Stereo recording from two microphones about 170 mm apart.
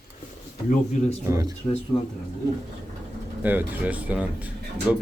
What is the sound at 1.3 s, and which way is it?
Speech, 20° right (ahead or behind).